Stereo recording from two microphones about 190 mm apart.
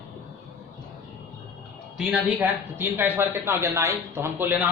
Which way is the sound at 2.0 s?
5° right (ahead or behind).